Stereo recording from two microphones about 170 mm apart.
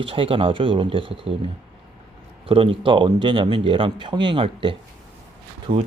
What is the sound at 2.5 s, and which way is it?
A man's voice, 30° right (ahead or behind).